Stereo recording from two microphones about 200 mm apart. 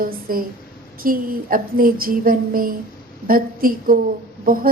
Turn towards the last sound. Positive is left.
turn(degrees=-45)  # may be behind; listen again after turning